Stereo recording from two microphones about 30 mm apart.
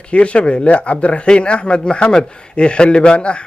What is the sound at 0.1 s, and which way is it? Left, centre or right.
A man's voice, left.